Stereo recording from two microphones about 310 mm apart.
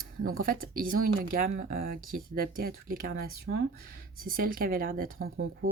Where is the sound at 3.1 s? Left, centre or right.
Right.